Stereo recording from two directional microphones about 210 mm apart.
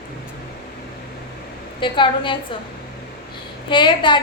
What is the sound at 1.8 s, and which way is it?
Speech, 25° left (ahead or behind).